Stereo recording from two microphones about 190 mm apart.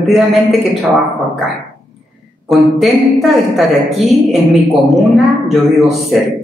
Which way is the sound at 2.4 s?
Centre (ahead or behind).